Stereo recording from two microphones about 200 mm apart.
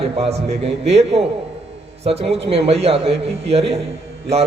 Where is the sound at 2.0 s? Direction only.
30° right (ahead or behind).